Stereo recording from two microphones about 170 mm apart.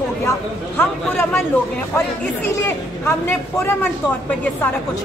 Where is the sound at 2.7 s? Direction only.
15° left (ahead or behind).